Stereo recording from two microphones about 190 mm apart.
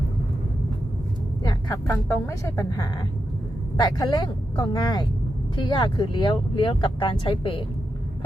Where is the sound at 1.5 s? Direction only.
20° left (ahead or behind).